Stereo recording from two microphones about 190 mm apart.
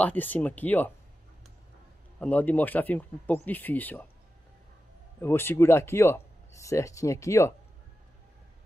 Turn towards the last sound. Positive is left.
turn(degrees=15)  # may be behind; listen again after turning